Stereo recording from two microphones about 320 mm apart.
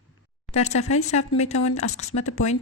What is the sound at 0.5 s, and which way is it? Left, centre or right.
Speech, centre.